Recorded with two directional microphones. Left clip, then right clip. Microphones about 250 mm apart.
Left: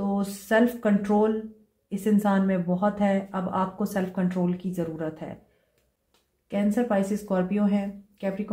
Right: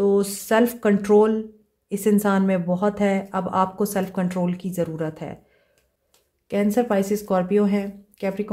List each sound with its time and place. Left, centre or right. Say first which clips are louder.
0.0 s speech: right 11 dB; right
6.5 s speech: right 4 dB; right